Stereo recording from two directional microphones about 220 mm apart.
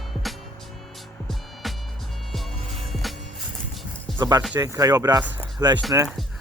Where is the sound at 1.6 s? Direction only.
Centre (ahead or behind).